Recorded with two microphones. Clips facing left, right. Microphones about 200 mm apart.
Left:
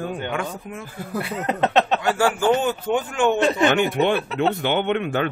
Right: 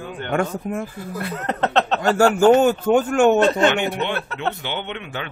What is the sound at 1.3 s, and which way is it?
Speech, 10° left (ahead or behind).